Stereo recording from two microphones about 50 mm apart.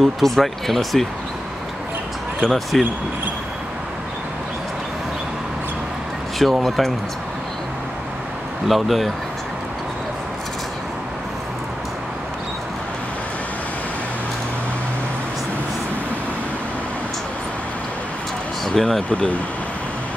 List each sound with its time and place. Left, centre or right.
0.0 s speech: centre
2.4 s speech: centre
6.4 s speech: centre
8.6 s speech: centre
18.7 s speech: centre